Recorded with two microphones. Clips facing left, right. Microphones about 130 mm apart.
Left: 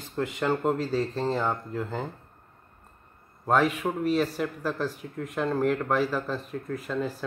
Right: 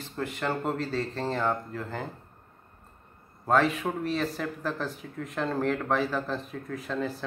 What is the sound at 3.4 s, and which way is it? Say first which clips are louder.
Speech: left 1 dB; 10° left (ahead or behind).